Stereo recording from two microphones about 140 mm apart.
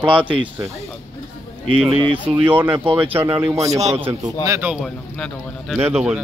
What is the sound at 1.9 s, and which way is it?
Speech, 40° right (ahead or behind).